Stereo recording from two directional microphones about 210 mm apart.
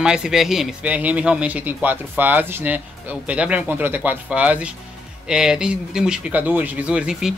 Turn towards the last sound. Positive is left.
turn(degrees=-5)  # may be behind; listen again after turning